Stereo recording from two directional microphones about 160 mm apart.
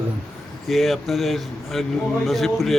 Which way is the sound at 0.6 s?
Centre (ahead or behind).